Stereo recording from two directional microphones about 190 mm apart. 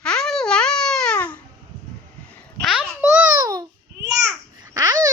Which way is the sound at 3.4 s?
20° right (ahead or behind).